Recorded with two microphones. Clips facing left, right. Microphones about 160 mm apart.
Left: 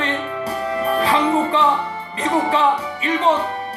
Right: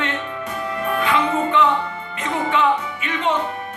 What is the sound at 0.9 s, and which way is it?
Music, 35° left (ahead or behind).